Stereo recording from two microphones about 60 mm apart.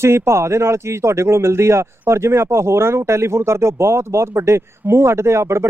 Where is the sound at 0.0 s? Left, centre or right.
Right.